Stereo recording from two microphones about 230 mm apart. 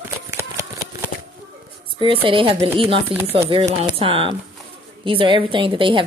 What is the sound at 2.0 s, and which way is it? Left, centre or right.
A woman's voice, right.